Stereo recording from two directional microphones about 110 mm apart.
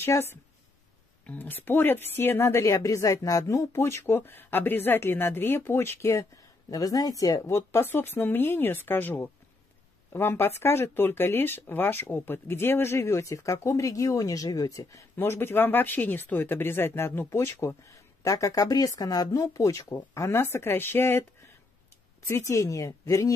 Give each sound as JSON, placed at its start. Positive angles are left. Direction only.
{"t": 0.0, "sound": "a woman's voice", "side_deg": 20}
{"t": 22.3, "sound": "a woman's voice", "side_deg": 30}